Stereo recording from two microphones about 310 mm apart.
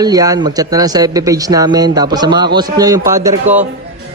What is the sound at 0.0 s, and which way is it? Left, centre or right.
Speech, centre.